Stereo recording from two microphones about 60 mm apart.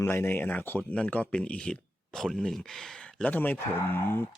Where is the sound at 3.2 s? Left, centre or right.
Left.